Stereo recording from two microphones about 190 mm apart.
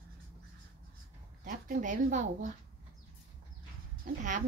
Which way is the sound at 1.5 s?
40° right (ahead or behind).